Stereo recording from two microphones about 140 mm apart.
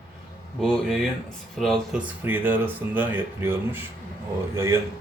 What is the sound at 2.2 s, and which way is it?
Speech, 15° right (ahead or behind).